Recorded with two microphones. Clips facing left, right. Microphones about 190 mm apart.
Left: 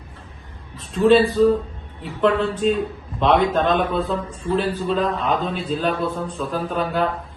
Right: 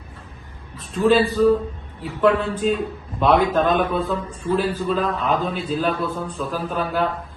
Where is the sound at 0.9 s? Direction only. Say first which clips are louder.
Left 2 dB; centre (ahead or behind).